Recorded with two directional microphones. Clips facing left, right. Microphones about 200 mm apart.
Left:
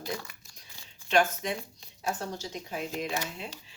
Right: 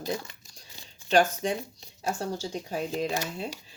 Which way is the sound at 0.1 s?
25° right (ahead or behind).